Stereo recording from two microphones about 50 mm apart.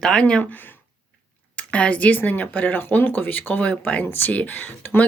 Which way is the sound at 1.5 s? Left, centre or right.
Left.